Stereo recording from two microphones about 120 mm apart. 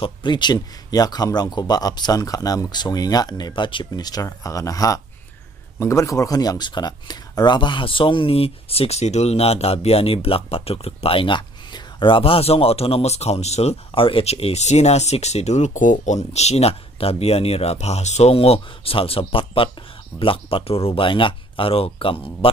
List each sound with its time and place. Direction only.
0.0 s speech: 40° left (ahead or behind)